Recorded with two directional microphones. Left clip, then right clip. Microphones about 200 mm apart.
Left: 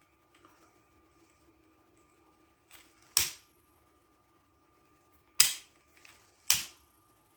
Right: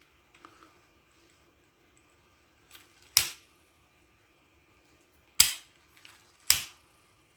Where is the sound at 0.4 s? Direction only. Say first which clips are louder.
Right 8 dB; 35° right (ahead or behind).